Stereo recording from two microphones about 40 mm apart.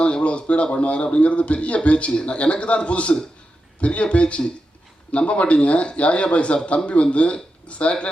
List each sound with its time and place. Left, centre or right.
0.0 s a man's voice: left